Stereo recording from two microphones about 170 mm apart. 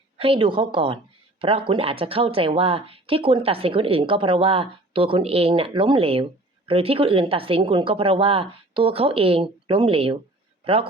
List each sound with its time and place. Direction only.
0.2 s speech: 30° right (ahead or behind)